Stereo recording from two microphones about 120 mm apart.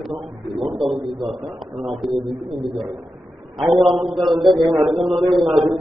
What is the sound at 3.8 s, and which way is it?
A man's voice, centre (ahead or behind).